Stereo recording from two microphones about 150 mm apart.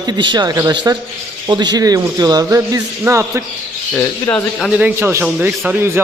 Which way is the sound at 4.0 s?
15° left (ahead or behind).